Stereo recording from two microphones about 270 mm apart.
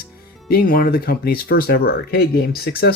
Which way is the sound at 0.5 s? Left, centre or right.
Left.